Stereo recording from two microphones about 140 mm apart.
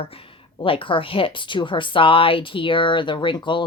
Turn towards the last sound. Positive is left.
turn(degrees=35)  # may be behind; listen again after turning